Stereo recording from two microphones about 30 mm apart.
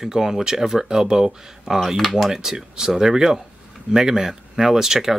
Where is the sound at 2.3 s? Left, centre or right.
Centre.